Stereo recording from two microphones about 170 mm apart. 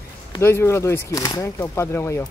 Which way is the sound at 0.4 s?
15° left (ahead or behind).